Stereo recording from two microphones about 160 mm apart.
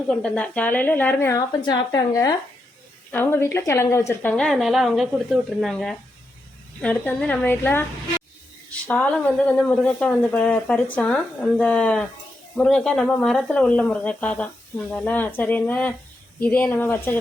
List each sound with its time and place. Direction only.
0.1 s a woman's voice: 5° left (ahead or behind); by 2.3 s 25° left (ahead or behind)
3.1 s a woman's voice: 15° left (ahead or behind)